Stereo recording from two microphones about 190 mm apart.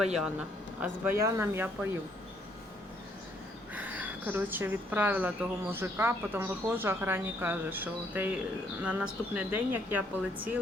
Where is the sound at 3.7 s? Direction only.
10° right (ahead or behind).